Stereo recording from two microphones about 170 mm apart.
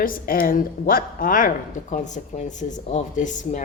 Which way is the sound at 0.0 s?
55° left (ahead or behind).